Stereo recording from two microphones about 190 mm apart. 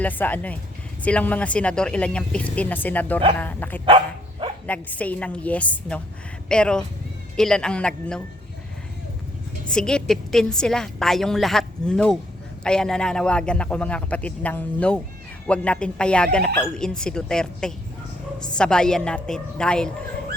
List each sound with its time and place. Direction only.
0.0 s speech: 10° left (ahead or behind)
3.8 s dog: 30° right (ahead or behind)
4.6 s a woman's voice: 10° left (ahead or behind)
9.6 s a woman's voice: 5° left (ahead or behind)